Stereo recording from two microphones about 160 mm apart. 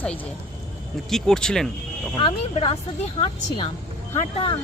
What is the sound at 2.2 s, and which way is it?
Speech, 35° left (ahead or behind).